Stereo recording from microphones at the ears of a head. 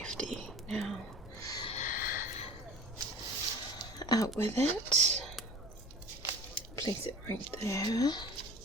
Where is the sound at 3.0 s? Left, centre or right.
Right.